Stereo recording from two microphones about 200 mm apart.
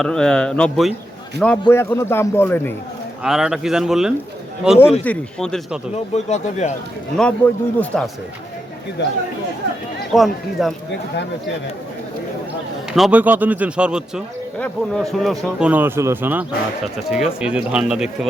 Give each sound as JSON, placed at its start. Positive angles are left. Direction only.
{"t": 0.0, "sound": "speech", "side_deg": 5}
{"t": 3.2, "sound": "speech", "side_deg": 0}
{"t": 6.1, "sound": "speech", "side_deg": 35}
{"t": 7.2, "sound": "speech", "side_deg": 5}
{"t": 10.1, "sound": "speech", "side_deg": 0}
{"t": 13.0, "sound": "a man's voice", "side_deg": -5}